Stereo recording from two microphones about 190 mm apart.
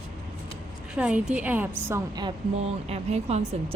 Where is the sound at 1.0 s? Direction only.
5° right (ahead or behind).